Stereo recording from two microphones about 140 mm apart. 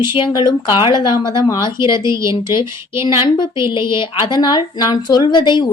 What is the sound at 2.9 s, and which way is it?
Speech, 20° right (ahead or behind).